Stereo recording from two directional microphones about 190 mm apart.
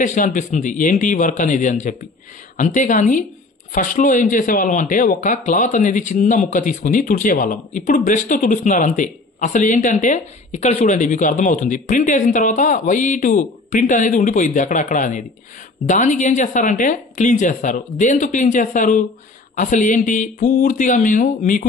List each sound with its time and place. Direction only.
0.0 s speech: 45° left (ahead or behind)